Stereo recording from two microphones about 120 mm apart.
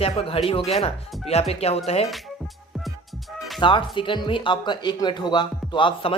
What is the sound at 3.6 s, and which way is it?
Speech, 40° left (ahead or behind).